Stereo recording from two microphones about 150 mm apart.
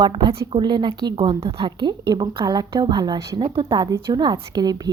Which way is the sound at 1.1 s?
40° right (ahead or behind).